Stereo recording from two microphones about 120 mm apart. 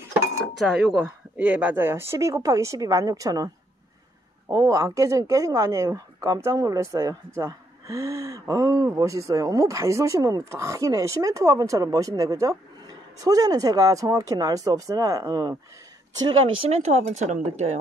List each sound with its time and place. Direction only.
0.6 s speech: 5° right (ahead or behind); by 3.4 s 30° right (ahead or behind)
4.5 s speech: 25° right (ahead or behind)
16.3 s speech: 50° right (ahead or behind); by 17.7 s 70° right (ahead or behind)